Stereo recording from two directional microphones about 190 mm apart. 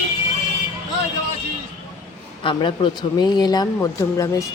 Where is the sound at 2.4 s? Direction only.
25° left (ahead or behind).